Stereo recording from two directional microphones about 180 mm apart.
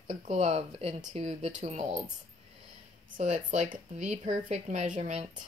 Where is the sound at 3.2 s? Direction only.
40° right (ahead or behind).